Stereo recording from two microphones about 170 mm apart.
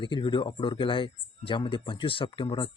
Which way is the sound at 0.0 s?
30° left (ahead or behind).